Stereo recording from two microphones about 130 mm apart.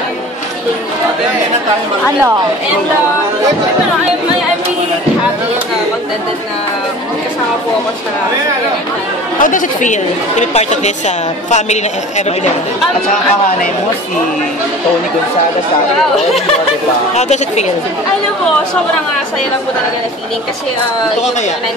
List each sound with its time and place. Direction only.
9.4 s speech: 85° left; by 10.9 s 60° left (ahead or behind)
17.1 s speech: 60° left (ahead or behind)